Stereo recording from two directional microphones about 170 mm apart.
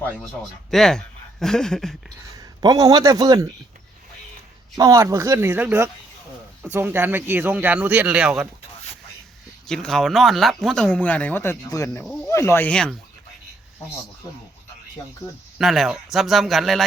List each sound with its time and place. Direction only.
0.7 s speech: 5° left (ahead or behind)
2.3 s a man's voice: 20° right (ahead or behind)
4.8 s speech: 20° right (ahead or behind)
9.6 s speech: 5° left (ahead or behind)
11.9 s speech: centre (ahead or behind)
12.3 s speech: 15° left (ahead or behind)
15.5 s speech: centre (ahead or behind)